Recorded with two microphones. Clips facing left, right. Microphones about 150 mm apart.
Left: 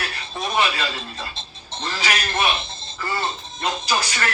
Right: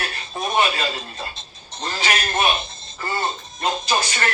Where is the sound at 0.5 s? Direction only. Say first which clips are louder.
Right 2 dB; 30° right (ahead or behind).